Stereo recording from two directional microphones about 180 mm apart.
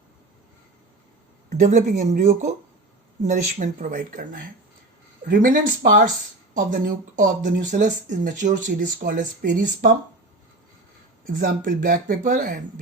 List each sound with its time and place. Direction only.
1.5 s speech: 40° right (ahead or behind)
11.3 s speech: 50° right (ahead or behind)